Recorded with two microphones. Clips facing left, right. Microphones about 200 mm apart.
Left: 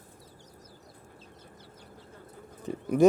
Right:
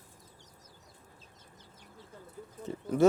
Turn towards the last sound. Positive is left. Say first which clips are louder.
# left 3 dB
turn(degrees=15)  # may be behind; listen again after turning